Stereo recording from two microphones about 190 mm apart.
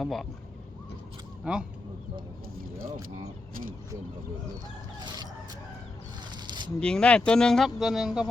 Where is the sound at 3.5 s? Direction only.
50° right (ahead or behind).